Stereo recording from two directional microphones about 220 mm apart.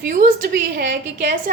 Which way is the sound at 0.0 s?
40° right (ahead or behind).